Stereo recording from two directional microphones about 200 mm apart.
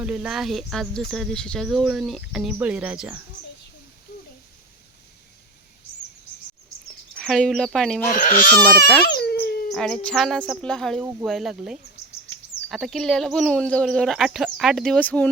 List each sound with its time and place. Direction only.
0.0 s speech: 5° right (ahead or behind)
7.2 s speech: centre (ahead or behind)
8.1 s speech: 45° left (ahead or behind)
9.0 s a sound: 50° left (ahead or behind)
9.7 s speech: 5° left (ahead or behind)